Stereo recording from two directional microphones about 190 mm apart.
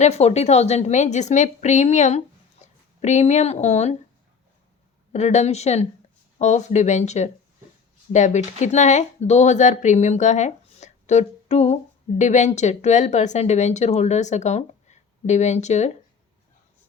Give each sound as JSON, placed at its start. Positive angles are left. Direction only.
{"t": 0.0, "sound": "speech", "side_deg": 35}
{"t": 2.6, "sound": "a sound", "side_deg": 40}
{"t": 3.0, "sound": "speech", "side_deg": 35}
{"t": 5.1, "sound": "speech", "side_deg": 35}